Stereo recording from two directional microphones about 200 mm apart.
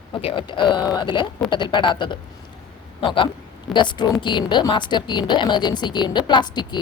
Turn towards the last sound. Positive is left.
turn(degrees=20)  # may be behind; listen again after turning